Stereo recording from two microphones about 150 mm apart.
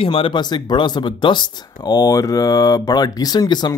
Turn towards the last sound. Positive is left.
turn(degrees=30)  # may be behind; listen again after turning